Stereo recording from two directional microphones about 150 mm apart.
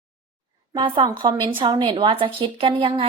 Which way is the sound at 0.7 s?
35° right (ahead or behind).